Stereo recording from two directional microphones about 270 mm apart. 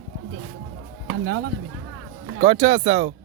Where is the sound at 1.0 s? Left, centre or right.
Right.